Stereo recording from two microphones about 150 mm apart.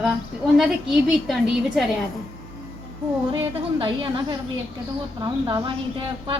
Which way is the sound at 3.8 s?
35° right (ahead or behind).